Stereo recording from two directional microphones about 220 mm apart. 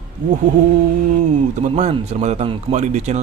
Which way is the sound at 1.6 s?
30° right (ahead or behind).